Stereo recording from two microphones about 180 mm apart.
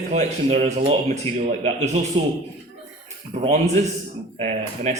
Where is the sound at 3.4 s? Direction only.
40° right (ahead or behind).